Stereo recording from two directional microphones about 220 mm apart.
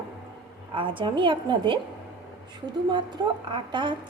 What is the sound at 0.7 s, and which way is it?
A woman's voice, 20° right (ahead or behind).